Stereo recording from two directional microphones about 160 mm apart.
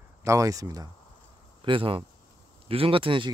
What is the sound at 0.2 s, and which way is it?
Speech, 20° right (ahead or behind).